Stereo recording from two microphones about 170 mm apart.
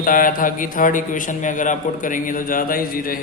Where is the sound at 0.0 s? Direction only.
55° left (ahead or behind).